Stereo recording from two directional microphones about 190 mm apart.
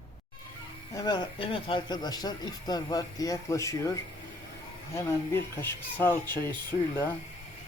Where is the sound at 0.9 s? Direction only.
20° left (ahead or behind).